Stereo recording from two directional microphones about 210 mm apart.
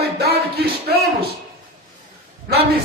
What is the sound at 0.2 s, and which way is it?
Music, 50° right (ahead or behind).